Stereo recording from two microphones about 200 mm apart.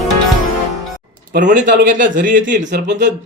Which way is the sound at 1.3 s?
60° right (ahead or behind).